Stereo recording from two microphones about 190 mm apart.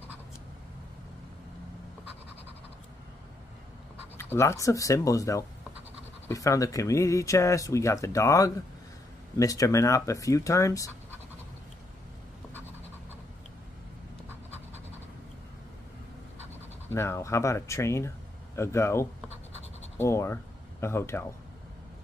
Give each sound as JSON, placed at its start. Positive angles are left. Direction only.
{"t": 4.2, "sound": "speech", "side_deg": 15}
{"t": 16.9, "sound": "speech", "side_deg": 15}